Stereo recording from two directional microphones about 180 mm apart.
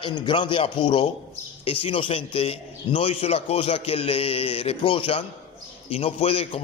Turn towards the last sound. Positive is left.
turn(degrees=30)  # may be behind; listen again after turning